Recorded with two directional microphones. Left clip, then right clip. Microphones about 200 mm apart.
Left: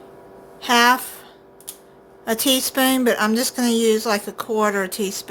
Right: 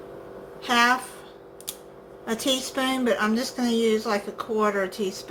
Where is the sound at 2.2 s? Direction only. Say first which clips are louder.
Left 6 dB; 50° left (ahead or behind).